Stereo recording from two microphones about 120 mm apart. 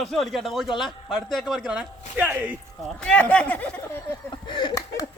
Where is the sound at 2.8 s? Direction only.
10° left (ahead or behind).